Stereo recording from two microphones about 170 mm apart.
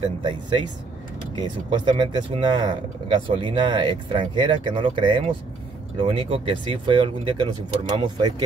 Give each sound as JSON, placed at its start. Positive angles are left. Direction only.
{"t": 1.3, "sound": "speech", "side_deg": -25}